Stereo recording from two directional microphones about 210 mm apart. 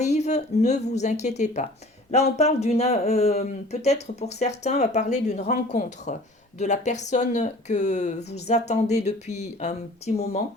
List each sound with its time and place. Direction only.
0.0 s speech: 30° left (ahead or behind)